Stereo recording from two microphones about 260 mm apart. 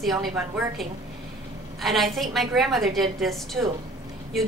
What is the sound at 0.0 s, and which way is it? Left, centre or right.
Speech, centre.